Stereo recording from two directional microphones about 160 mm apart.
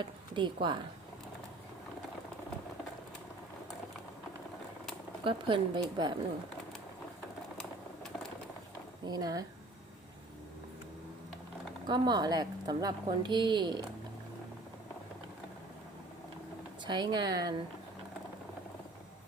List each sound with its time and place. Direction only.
0.0 s speech: 30° right (ahead or behind)
5.2 s a woman's voice: 30° right (ahead or behind)
9.0 s a woman's voice: 25° right (ahead or behind)
11.9 s a woman's voice: 25° right (ahead or behind)
16.8 s a woman's voice: 25° right (ahead or behind)